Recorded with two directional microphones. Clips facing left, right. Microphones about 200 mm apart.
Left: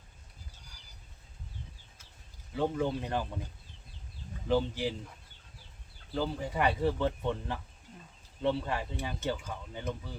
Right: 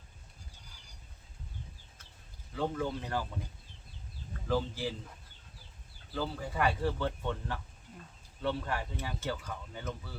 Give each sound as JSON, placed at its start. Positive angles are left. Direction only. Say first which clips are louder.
{"t": 2.6, "sound": "speech", "louder": "left 3 dB", "side_deg": 15}
{"t": 4.4, "sound": "speech", "louder": "left 3 dB", "side_deg": 20}
{"t": 6.1, "sound": "speech", "louder": "left 2 dB", "side_deg": 15}